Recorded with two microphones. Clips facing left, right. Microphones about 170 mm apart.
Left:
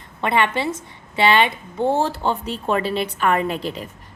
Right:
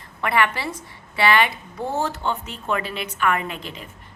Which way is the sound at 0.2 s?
25° left (ahead or behind).